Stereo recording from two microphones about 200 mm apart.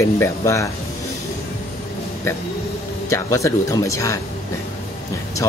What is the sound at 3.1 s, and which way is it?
Speech, 15° left (ahead or behind).